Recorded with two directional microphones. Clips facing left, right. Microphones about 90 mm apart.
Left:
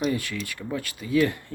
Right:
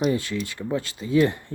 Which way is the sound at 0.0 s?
25° right (ahead or behind).